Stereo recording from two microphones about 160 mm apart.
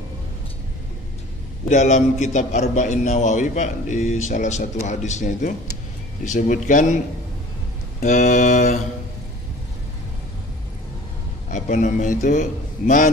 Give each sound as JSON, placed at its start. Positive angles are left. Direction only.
{"t": 1.7, "sound": "speech", "side_deg": 45}
{"t": 8.0, "sound": "speech", "side_deg": 50}
{"t": 11.5, "sound": "speech", "side_deg": 55}